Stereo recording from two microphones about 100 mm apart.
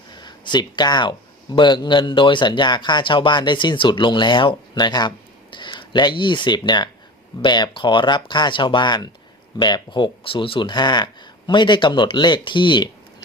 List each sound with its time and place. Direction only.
0.2 s speech: 45° left (ahead or behind)